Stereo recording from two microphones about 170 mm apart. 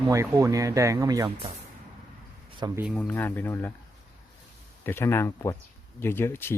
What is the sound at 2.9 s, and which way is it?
Speech, 10° left (ahead or behind).